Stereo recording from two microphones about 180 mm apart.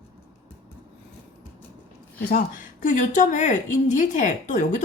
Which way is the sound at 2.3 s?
50° left (ahead or behind).